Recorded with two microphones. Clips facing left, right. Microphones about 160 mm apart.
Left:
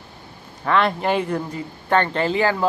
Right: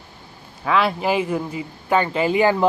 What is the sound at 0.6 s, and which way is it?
A man's voice, 5° right (ahead or behind).